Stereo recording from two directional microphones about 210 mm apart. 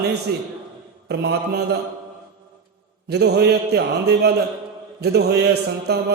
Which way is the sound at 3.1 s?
50° right (ahead or behind).